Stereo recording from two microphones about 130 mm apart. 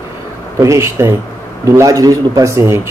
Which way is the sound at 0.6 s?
20° right (ahead or behind).